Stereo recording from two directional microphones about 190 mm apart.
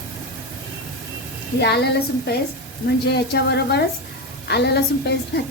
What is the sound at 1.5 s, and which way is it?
A woman's voice, 60° left (ahead or behind).